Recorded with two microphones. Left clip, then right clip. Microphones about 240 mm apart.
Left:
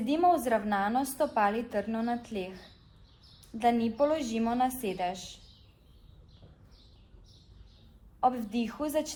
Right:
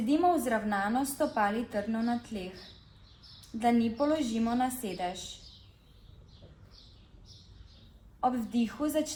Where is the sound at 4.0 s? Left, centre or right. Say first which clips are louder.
Left 2 dB; left.